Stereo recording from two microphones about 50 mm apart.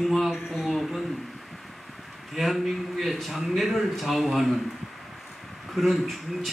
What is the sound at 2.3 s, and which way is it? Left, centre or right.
Speech, centre.